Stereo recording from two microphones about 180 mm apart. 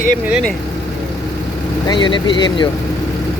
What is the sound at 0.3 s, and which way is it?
Speech, 5° right (ahead or behind).